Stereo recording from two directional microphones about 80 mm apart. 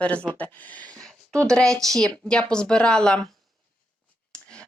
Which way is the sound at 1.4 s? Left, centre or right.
Centre.